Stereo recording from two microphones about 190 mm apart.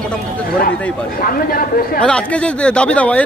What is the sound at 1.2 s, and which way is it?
Speech, 50° left (ahead or behind).